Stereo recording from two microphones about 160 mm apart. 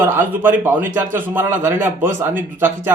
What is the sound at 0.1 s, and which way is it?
Speech, 15° right (ahead or behind).